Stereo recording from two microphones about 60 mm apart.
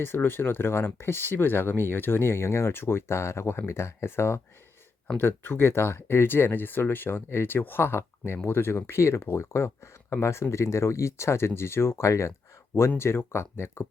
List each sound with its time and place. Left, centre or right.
0.0 s speech: left
5.1 s speech: left
13.0 s speech: left